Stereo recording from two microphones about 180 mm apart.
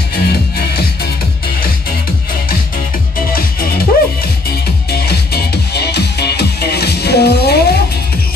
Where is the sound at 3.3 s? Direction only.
55° left (ahead or behind).